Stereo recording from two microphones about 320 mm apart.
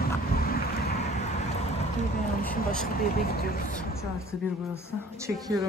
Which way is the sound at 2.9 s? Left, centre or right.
Left.